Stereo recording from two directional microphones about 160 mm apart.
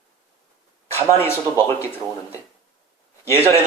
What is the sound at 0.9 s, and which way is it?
Speech, 15° left (ahead or behind).